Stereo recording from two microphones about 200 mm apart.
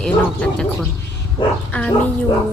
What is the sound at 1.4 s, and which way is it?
Speech, 25° left (ahead or behind).